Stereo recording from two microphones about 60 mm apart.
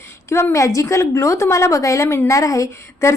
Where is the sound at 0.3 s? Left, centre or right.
Left.